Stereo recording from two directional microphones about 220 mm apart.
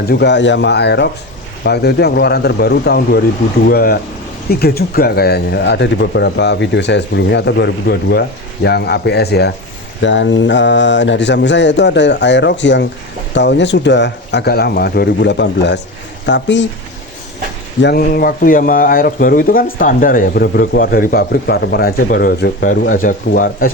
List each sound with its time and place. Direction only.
0.1 s speech: 50° left (ahead or behind)
17.7 s a man's voice: 45° left (ahead or behind)